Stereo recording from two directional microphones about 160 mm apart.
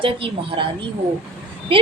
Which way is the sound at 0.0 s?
35° right (ahead or behind).